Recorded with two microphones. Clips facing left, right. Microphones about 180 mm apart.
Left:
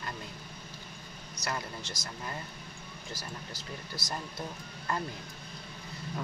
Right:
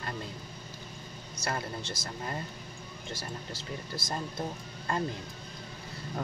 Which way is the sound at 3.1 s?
25° right (ahead or behind).